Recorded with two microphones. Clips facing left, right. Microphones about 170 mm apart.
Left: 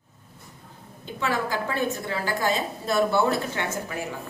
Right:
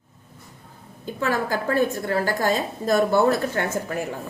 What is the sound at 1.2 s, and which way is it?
A woman's voice, 45° right (ahead or behind).